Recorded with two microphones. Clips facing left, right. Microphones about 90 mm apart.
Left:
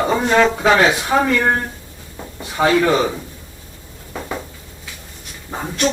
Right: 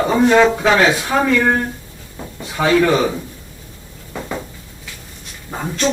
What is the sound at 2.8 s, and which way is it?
Speech, 10° left (ahead or behind).